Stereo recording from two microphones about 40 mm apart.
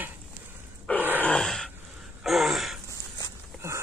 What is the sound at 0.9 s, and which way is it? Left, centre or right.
Groan, left.